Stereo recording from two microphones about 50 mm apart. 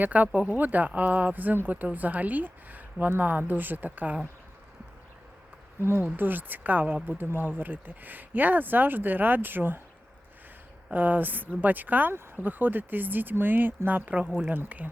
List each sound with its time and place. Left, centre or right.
0.0 s speech: right
5.8 s speech: right
6.1 s speech: right
10.9 s speech: right